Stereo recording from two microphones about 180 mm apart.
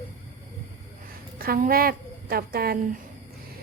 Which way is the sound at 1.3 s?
55° right (ahead or behind).